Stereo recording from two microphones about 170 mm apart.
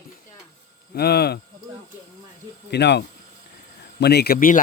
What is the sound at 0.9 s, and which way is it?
Speech, 70° left (ahead or behind).